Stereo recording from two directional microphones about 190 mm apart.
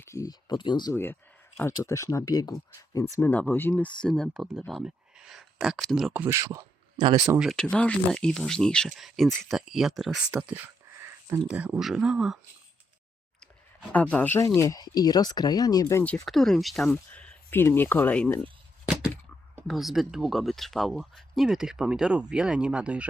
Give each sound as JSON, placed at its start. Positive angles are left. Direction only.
{"t": 0.0, "sound": "speech", "side_deg": 15}
{"t": 6.2, "sound": "speech", "side_deg": -15}
{"t": 7.3, "sound": "speech", "side_deg": 0}
{"t": 13.9, "sound": "speech", "side_deg": 5}
{"t": 16.2, "sound": "speech", "side_deg": 0}
{"t": 19.6, "sound": "speech", "side_deg": 0}